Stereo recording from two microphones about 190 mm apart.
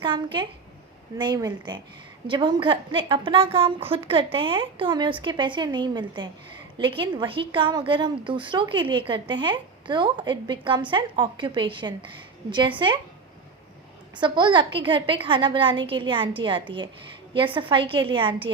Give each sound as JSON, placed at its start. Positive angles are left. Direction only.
{"t": 0.0, "sound": "a woman's voice", "side_deg": -25}
{"t": 14.2, "sound": "a woman's voice", "side_deg": -25}